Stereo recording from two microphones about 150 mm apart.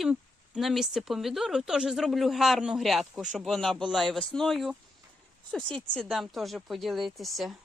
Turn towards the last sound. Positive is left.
turn(degrees=0)  # may be behind; listen again after turning